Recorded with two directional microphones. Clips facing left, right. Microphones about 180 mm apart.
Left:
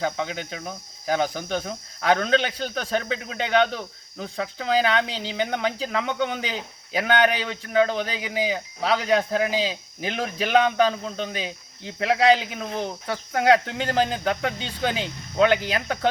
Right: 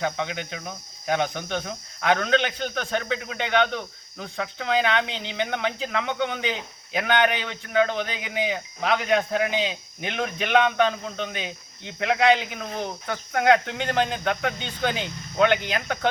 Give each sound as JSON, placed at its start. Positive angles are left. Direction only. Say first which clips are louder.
{"t": 0.0, "sound": "speech", "louder": "left 1 dB", "side_deg": 35}